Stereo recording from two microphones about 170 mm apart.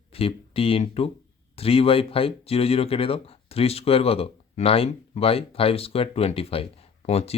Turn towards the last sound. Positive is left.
turn(degrees=35)  # may be behind; listen again after turning